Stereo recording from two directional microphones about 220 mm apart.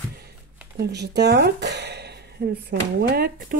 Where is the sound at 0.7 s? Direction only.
50° right (ahead or behind).